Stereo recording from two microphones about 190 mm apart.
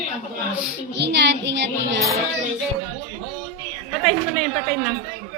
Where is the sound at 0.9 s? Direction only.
65° right (ahead or behind).